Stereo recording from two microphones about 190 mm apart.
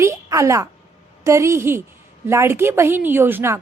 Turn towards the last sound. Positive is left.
turn(degrees=-10)  # may be behind; listen again after turning